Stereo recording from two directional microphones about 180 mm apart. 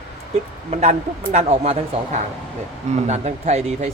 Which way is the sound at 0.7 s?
40° right (ahead or behind).